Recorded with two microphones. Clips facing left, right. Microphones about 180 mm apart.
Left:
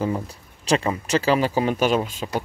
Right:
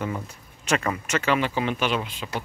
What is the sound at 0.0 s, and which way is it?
Speech, 35° left (ahead or behind).